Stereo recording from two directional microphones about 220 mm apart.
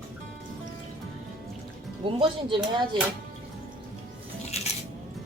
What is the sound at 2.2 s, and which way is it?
Speech, 20° right (ahead or behind).